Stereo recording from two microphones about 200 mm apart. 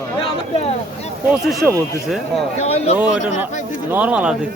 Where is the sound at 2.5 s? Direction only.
30° left (ahead or behind).